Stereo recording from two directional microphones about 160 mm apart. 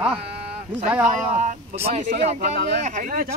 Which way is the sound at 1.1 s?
50° right (ahead or behind).